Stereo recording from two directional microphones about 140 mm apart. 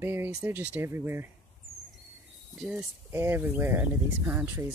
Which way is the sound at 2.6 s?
15° right (ahead or behind).